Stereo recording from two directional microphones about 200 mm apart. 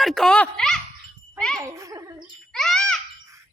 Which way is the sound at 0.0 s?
Centre (ahead or behind).